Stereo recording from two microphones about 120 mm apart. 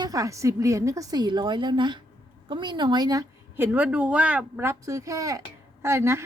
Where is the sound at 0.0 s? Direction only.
30° right (ahead or behind).